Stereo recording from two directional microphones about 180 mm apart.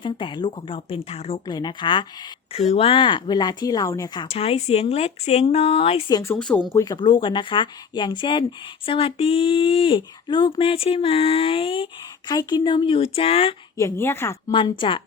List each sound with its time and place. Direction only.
0.0 s a woman's voice: 25° left (ahead or behind)
6.1 s a woman's voice: 20° left (ahead or behind)
13.7 s a woman's voice: 15° left (ahead or behind)
14.5 s a woman's voice: 30° left (ahead or behind)